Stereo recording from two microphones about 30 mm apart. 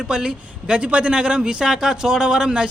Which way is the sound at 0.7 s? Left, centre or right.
Right.